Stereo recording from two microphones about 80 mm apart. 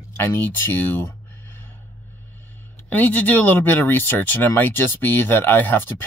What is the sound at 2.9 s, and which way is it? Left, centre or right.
Speech, centre.